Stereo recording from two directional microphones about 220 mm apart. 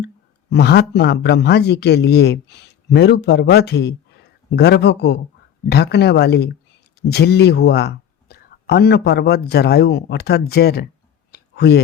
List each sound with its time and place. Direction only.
0.5 s speech: 50° left (ahead or behind)
11.3 s clicking: 45° left (ahead or behind)